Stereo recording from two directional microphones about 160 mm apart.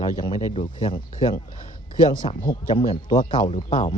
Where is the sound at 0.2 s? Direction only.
25° left (ahead or behind).